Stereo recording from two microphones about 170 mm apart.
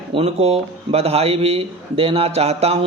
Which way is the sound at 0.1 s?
35° right (ahead or behind).